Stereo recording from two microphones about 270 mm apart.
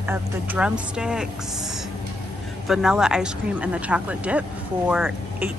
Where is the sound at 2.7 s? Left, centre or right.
Centre.